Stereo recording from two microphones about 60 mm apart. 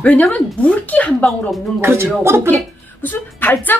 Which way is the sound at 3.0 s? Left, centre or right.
Left.